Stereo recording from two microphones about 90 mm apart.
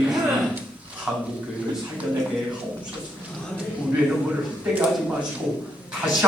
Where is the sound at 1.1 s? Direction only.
5° right (ahead or behind).